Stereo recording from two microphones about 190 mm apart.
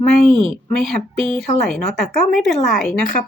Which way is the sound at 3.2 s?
40° left (ahead or behind).